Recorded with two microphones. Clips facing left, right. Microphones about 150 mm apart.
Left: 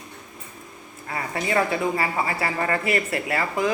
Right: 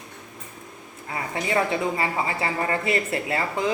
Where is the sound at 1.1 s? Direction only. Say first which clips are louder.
Left 1 dB; 20° right (ahead or behind).